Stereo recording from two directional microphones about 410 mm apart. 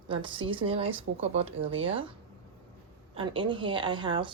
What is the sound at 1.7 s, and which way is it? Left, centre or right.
Speech, right.